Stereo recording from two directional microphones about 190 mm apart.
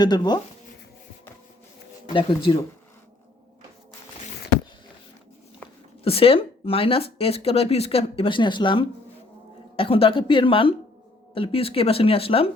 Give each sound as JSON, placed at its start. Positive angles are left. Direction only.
{"t": 0.0, "sound": "speech", "side_deg": 20}
{"t": 2.1, "sound": "speech", "side_deg": 25}
{"t": 6.1, "sound": "speech", "side_deg": 30}